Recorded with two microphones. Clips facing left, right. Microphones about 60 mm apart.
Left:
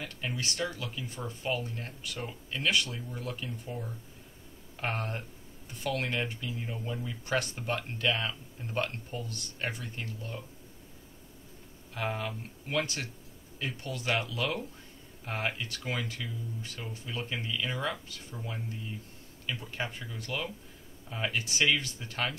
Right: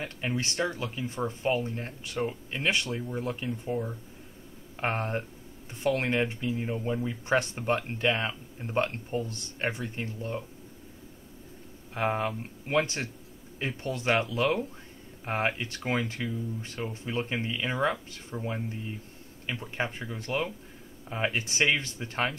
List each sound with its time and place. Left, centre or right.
0.3 s speech: right
11.9 s speech: right